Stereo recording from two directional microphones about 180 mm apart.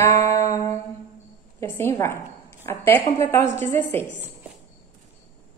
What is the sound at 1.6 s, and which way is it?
Speech, 15° left (ahead or behind).